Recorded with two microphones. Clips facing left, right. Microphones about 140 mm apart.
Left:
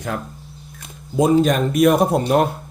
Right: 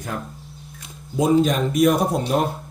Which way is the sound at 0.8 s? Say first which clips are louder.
Left 4 dB; 50° left (ahead or behind).